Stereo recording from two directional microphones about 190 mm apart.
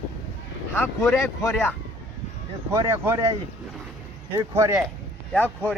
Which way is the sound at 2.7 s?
15° right (ahead or behind).